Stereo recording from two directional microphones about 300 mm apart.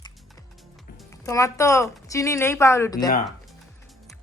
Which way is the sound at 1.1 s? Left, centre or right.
Centre.